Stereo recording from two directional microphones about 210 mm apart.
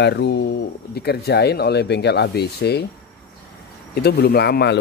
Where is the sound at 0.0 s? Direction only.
55° left (ahead or behind).